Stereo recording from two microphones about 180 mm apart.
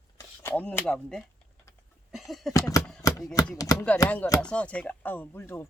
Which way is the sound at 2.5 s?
20° left (ahead or behind).